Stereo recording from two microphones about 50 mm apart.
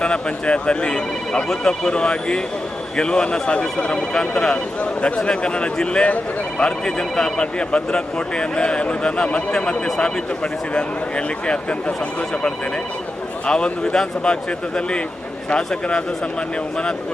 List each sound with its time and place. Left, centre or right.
0.0 s speech: left
13.5 s a man's voice: centre